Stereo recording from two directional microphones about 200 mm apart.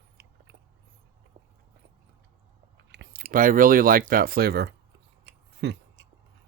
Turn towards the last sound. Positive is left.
turn(degrees=-60)  # may be behind; listen again after turning